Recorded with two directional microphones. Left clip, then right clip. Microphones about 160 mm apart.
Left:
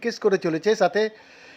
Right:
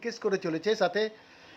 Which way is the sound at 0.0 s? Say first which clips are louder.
Left 8 dB; 20° left (ahead or behind).